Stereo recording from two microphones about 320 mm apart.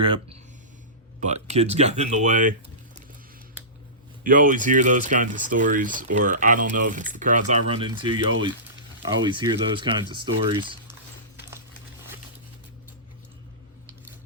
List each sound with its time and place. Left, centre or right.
0.0 s speech: centre
4.2 s speech: right